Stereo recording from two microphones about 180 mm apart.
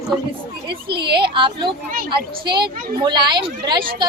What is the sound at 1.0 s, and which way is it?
Speech, 25° right (ahead or behind).